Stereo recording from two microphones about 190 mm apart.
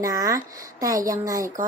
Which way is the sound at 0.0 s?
15° right (ahead or behind).